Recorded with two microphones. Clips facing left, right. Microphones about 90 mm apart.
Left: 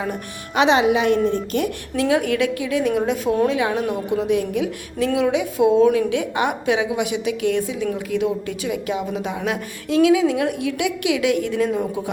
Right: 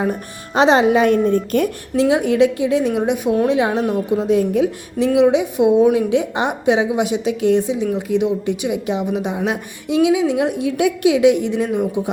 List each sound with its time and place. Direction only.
0.0 s a woman's voice: 35° right (ahead or behind)
2.0 s a woman's voice: 25° right (ahead or behind)
4.9 s a woman's voice: 20° right (ahead or behind)